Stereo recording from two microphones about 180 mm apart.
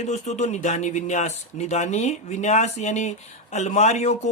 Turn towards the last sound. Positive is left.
turn(degrees=40)  # may be behind; listen again after turning